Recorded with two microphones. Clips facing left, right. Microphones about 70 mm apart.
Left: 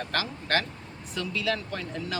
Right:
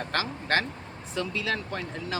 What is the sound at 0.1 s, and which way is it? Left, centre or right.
Speech, right.